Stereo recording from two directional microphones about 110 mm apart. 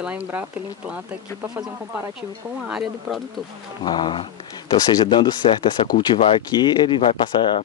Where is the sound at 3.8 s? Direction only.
45° left (ahead or behind).